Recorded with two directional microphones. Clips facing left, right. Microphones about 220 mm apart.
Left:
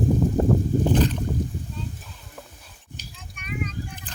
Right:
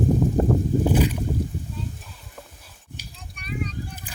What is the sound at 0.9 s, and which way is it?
Boat, 10° right (ahead or behind).